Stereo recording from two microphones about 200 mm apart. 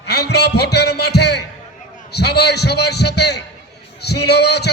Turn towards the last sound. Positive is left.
turn(degrees=55)  # may be behind; listen again after turning